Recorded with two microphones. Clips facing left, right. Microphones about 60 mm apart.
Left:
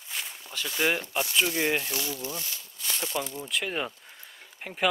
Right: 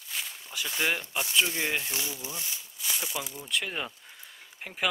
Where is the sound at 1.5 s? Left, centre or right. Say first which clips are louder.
Left 4 dB; left.